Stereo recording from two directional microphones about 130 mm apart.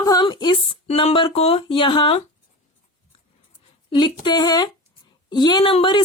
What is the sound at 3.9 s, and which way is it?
A woman's voice, 35° left (ahead or behind).